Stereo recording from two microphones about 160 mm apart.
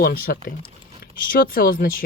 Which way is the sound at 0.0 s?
70° left (ahead or behind).